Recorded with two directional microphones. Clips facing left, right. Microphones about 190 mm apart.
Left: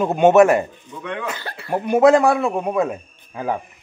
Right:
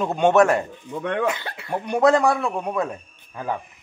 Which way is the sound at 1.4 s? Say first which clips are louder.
Left 2 dB; 20° right (ahead or behind).